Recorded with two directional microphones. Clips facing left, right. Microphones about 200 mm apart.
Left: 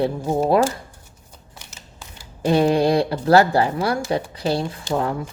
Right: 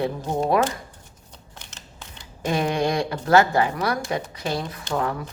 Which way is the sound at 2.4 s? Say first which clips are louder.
Left 6 dB; 30° left (ahead or behind).